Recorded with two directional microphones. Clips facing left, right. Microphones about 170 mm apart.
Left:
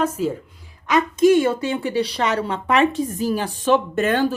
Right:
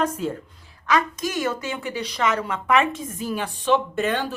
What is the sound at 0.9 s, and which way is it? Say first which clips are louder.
A woman's voice: left 9 dB; 25° left (ahead or behind).